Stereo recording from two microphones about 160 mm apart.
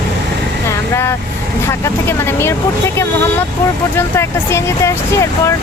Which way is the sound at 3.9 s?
15° left (ahead or behind).